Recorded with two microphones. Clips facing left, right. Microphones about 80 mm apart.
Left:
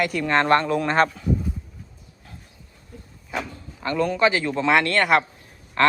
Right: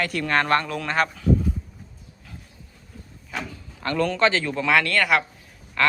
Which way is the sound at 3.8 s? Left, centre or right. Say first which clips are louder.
Left 1 dB; centre.